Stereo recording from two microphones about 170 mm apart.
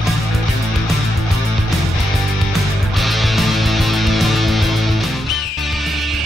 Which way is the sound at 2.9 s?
Centre (ahead or behind).